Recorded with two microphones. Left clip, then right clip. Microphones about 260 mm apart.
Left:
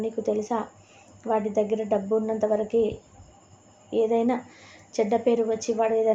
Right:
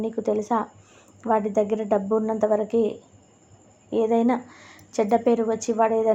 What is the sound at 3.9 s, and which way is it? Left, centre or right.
A woman's voice, right.